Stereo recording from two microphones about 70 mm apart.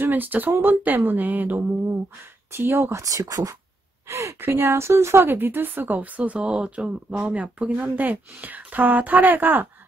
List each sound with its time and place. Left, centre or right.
0.0 s speech: right
2.9 s a woman's voice: right
4.4 s speech: right